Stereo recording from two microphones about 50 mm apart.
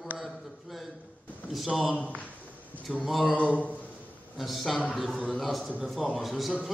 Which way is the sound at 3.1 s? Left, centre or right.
Centre.